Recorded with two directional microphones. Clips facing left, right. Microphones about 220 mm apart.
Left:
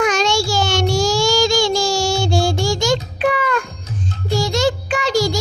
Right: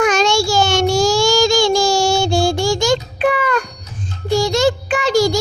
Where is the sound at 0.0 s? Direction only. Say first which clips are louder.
Right 2 dB; 50° right (ahead or behind).